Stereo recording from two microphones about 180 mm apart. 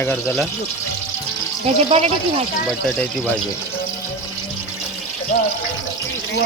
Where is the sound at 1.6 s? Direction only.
35° right (ahead or behind).